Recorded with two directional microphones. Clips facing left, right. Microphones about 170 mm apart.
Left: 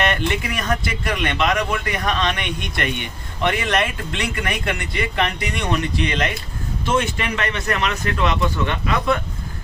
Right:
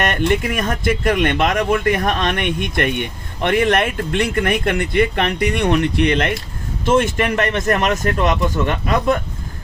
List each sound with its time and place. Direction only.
0.0 s speech: 45° right (ahead or behind)
6.8 s speech: 45° right (ahead or behind)